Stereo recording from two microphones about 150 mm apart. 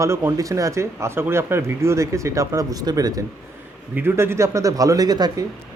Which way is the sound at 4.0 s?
15° right (ahead or behind).